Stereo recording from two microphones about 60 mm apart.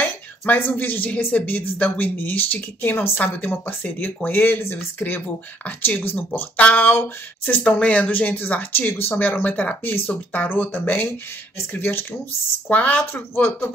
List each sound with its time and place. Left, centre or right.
0.5 s speech: left
9.4 s speech: left
12.6 s speech: left